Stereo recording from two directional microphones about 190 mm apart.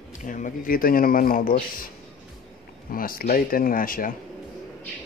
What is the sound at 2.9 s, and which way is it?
Speech, 50° left (ahead or behind).